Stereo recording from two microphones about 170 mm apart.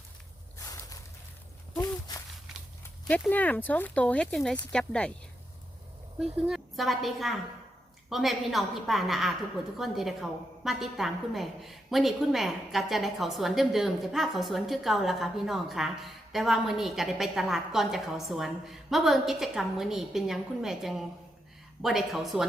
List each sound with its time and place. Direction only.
1.8 s a sound: 20° left (ahead or behind)
2.5 s horse: 5° right (ahead or behind)
3.1 s a woman's voice: 10° left (ahead or behind)
6.4 s a woman's voice: centre (ahead or behind)